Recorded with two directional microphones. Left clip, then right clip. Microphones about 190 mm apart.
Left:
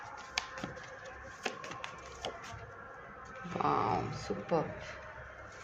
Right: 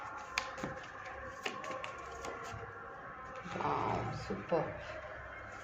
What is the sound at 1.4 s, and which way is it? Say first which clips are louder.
Music: left 1 dB; 20° left (ahead or behind).